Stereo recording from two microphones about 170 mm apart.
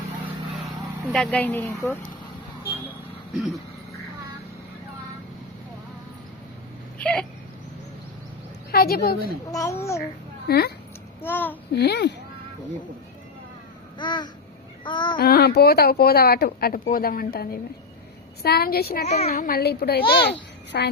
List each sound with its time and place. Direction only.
1.1 s a woman's voice: 5° left (ahead or behind)
7.0 s a sound: 5° left (ahead or behind)
8.7 s a woman's voice: 65° left (ahead or behind)
9.5 s a woman's voice: 20° left (ahead or behind)
10.5 s a child's voice: 65° left (ahead or behind)
11.2 s a woman's voice: 10° left (ahead or behind)
11.7 s a child's voice: 75° left (ahead or behind)
14.0 s a child's voice: 25° left (ahead or behind)
15.2 s a woman's voice: 65° left (ahead or behind)
19.0 s speech: 40° left (ahead or behind)
19.3 s a child's voice: 60° left (ahead or behind)